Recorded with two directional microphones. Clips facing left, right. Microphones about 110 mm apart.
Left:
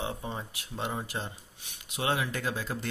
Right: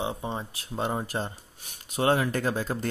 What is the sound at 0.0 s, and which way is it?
Speech, 20° right (ahead or behind).